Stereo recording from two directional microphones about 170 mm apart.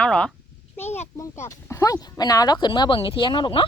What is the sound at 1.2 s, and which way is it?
A woman's voice, 15° left (ahead or behind).